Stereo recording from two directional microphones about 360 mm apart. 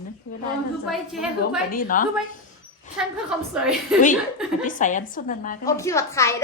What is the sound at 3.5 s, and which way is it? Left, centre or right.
Speech, centre.